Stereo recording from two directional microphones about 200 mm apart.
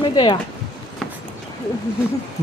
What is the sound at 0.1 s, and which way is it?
Speech, 20° left (ahead or behind).